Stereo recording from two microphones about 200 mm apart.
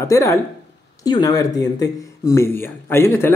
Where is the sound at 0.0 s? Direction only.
15° left (ahead or behind).